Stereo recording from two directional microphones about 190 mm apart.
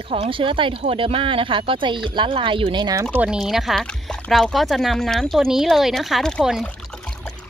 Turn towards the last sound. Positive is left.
turn(degrees=5)  # may be behind; listen again after turning